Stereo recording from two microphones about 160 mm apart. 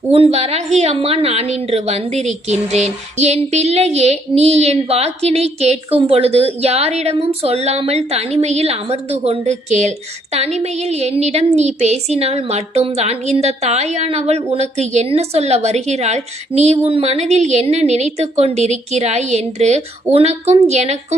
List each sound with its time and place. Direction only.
0.1 s a woman's voice: 40° right (ahead or behind)